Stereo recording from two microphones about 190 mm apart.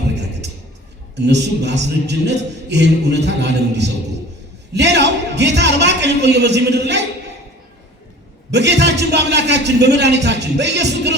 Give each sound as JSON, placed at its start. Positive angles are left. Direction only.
{"t": 1.1, "sound": "a man's voice", "side_deg": -65}
{"t": 8.5, "sound": "a man's voice", "side_deg": -65}